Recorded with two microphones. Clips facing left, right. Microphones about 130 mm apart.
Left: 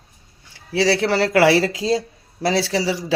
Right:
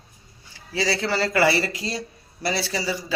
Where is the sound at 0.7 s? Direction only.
75° left (ahead or behind).